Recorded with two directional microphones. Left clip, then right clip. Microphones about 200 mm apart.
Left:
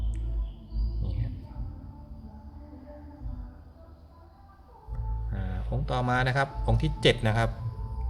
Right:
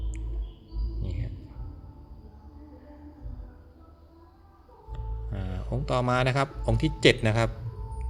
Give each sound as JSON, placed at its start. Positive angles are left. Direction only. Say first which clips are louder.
{"t": 5.3, "sound": "speech", "louder": "right 2 dB", "side_deg": -20}